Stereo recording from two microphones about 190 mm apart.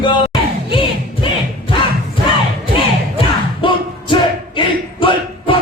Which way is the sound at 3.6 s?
25° left (ahead or behind).